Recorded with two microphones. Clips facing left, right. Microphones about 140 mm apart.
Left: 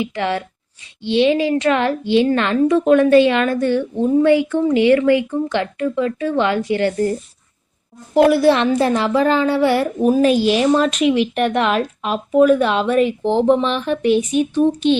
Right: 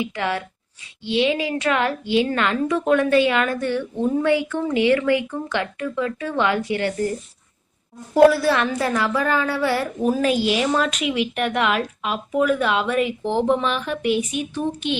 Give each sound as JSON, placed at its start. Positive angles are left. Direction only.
{"t": 0.0, "sound": "a woman's voice", "side_deg": 30}
{"t": 8.1, "sound": "a woman's voice", "side_deg": 25}